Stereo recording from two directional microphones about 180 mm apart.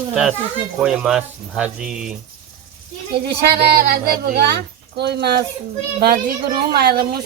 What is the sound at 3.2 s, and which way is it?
A woman's voice, 60° right (ahead or behind).